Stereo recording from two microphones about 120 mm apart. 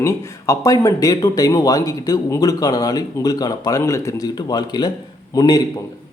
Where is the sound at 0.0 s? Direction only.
25° left (ahead or behind).